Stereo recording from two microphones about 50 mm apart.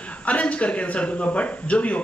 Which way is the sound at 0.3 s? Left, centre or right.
Left.